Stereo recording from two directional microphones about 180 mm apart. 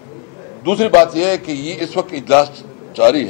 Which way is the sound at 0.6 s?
15° left (ahead or behind).